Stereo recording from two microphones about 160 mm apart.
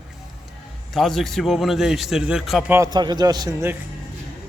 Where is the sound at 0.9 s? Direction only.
Centre (ahead or behind).